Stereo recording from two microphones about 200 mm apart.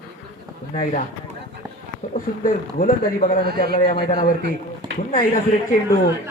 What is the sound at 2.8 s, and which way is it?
Speech, 45° left (ahead or behind).